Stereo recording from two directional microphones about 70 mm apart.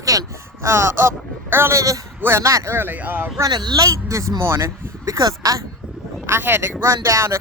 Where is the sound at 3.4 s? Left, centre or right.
Right.